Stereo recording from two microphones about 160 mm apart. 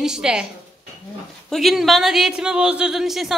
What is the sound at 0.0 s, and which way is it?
Speech, 5° right (ahead or behind).